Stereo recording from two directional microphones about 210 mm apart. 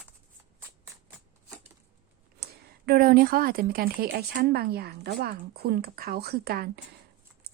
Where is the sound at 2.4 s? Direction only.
50° right (ahead or behind).